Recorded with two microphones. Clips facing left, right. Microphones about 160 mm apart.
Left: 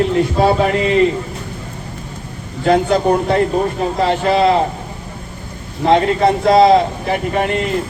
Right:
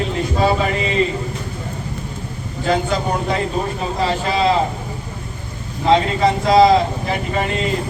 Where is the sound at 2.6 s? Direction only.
55° left (ahead or behind).